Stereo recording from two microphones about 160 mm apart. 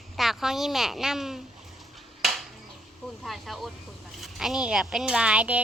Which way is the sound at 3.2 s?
Centre (ahead or behind).